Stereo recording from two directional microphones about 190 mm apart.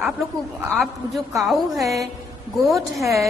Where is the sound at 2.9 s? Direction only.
15° right (ahead or behind).